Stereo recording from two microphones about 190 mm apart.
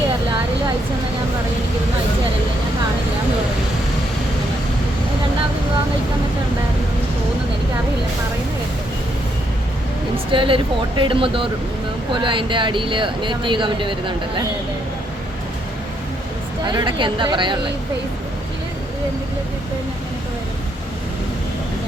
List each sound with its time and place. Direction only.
10.3 s speech: 25° right (ahead or behind)
16.6 s speech: 25° right (ahead or behind)